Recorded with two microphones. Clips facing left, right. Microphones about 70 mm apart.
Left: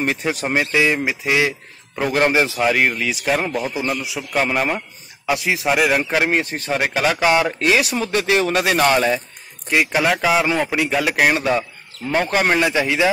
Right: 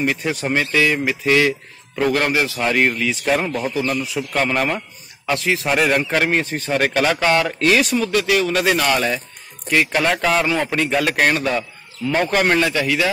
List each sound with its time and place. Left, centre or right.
0.2 s a man's voice: centre
2.1 s speech: left
2.6 s a man's voice: centre
3.7 s a man's voice: centre
8.0 s speech: left
9.7 s a man's voice: centre